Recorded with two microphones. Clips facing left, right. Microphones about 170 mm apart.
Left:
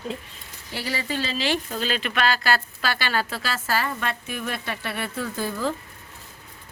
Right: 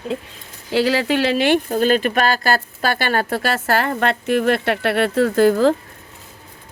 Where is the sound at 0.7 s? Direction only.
90° right.